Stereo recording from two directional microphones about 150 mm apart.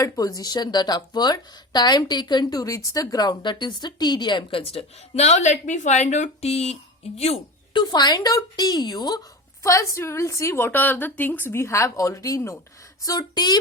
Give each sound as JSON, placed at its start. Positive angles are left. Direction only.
{"t": 0.0, "sound": "speech", "side_deg": 25}
{"t": 7.7, "sound": "speech", "side_deg": 30}